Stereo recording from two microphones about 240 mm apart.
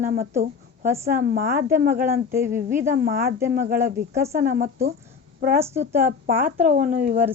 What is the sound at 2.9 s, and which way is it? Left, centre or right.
Speech, right.